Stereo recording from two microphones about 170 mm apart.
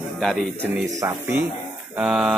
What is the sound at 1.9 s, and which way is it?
Speech, 5° right (ahead or behind).